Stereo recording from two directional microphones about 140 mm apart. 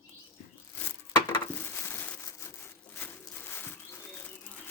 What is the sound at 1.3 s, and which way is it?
Crushing, 15° left (ahead or behind).